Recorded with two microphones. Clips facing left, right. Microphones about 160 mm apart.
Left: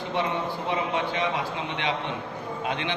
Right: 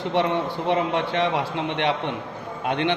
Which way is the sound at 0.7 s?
70° right (ahead or behind).